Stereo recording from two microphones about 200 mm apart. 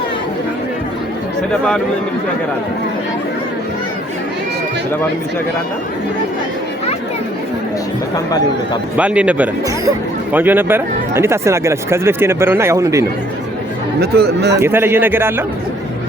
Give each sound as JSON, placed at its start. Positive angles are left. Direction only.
{"t": 9.0, "sound": "speech", "side_deg": -5}
{"t": 14.0, "sound": "speech", "side_deg": -55}
{"t": 14.6, "sound": "speech", "side_deg": -10}